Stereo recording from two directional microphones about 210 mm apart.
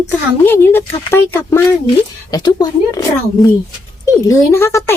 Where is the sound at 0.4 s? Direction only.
10° left (ahead or behind).